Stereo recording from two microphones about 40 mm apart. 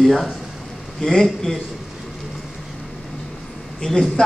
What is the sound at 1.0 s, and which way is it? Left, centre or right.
Speech, centre.